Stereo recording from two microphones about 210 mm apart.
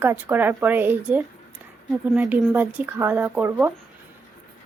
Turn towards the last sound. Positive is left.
turn(degrees=-10)  # may be behind; listen again after turning